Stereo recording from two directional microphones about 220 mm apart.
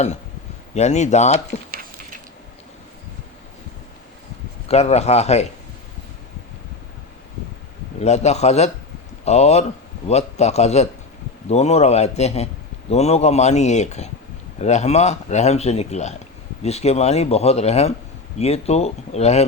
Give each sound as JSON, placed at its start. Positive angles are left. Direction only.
{"t": 0.7, "sound": "speech", "side_deg": 30}
{"t": 4.7, "sound": "speech", "side_deg": 30}
{"t": 7.9, "sound": "speech", "side_deg": 30}